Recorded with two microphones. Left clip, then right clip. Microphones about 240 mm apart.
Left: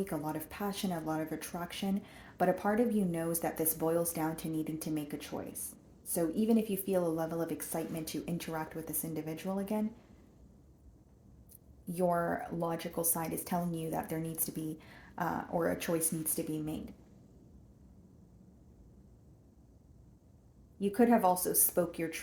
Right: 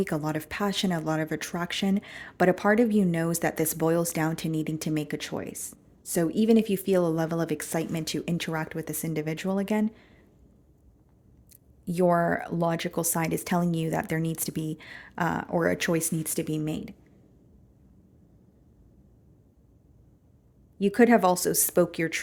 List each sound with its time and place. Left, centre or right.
0.0 s speech: right
11.9 s speech: right
20.7 s speech: right